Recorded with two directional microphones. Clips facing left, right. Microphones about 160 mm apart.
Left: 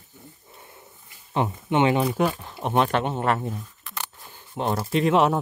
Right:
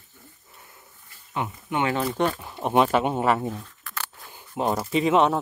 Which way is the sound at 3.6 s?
15° left (ahead or behind).